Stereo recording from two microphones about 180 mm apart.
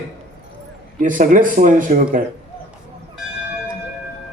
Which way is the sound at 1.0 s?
45° right (ahead or behind).